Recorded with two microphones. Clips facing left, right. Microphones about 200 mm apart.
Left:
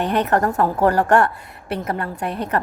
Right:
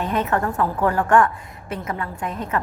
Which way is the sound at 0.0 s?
70° left (ahead or behind).